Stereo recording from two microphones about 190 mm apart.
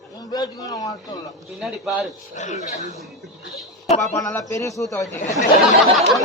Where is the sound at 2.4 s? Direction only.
40° left (ahead or behind).